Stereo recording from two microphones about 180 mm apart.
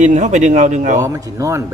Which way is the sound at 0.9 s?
20° right (ahead or behind).